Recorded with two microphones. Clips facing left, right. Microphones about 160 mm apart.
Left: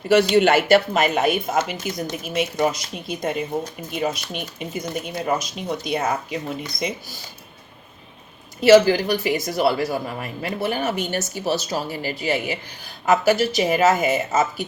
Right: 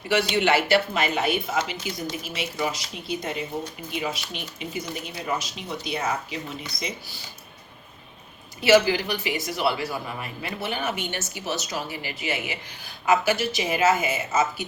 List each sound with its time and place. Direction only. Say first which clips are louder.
0.1 s speech: left 6 dB; 45° left (ahead or behind)
8.6 s a woman's voice: left 6 dB; 45° left (ahead or behind)